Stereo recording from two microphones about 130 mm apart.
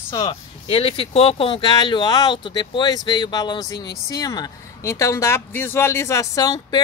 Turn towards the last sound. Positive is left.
turn(degrees=30)  # may be behind; listen again after turning